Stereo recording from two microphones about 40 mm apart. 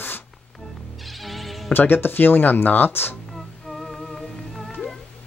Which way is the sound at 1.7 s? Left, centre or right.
Left.